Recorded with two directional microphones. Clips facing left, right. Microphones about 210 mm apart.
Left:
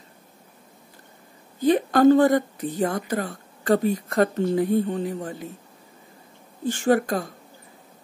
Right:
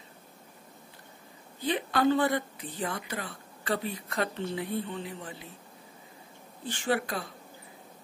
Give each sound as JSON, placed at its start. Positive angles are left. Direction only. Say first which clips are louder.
{"t": 1.6, "sound": "a woman's voice", "louder": "left 10 dB", "side_deg": 45}
{"t": 6.6, "sound": "a woman's voice", "louder": "left 9 dB", "side_deg": 45}